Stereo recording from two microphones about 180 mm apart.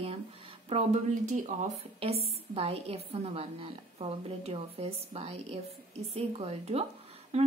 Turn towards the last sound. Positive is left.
turn(degrees=-35)  # may be behind; listen again after turning